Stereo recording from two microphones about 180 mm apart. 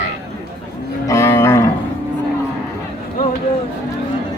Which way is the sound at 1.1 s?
15° left (ahead or behind).